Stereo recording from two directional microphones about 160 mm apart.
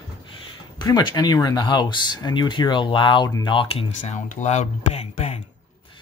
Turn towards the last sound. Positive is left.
turn(degrees=40)  # may be behind; listen again after turning